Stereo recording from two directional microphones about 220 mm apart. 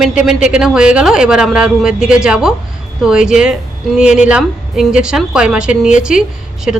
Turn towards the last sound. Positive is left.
turn(degrees=-5)  # may be behind; listen again after turning